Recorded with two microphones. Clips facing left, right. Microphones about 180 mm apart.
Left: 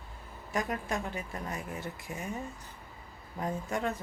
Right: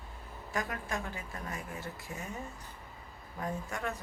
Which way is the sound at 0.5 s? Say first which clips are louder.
Left 3 dB; 20° left (ahead or behind).